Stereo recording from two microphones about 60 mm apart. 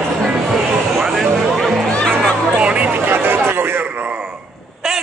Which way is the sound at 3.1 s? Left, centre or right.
Right.